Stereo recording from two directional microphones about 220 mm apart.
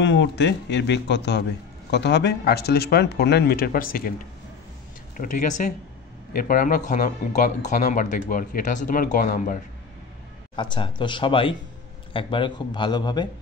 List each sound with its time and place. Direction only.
0.0 s speech: 55° left (ahead or behind)
5.1 s speech: 35° left (ahead or behind)
10.5 s speech: 20° left (ahead or behind)